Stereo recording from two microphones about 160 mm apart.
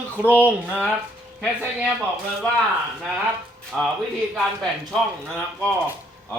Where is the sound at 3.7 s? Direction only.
Centre (ahead or behind).